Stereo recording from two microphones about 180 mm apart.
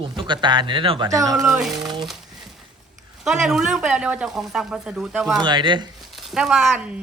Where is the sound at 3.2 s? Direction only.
Centre (ahead or behind).